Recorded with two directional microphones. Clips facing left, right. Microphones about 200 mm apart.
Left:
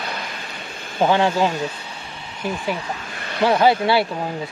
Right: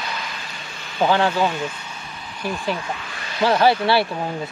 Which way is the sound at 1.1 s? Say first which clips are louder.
Left 1 dB; 20° left (ahead or behind).